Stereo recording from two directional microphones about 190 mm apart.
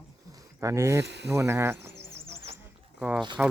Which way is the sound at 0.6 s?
15° right (ahead or behind).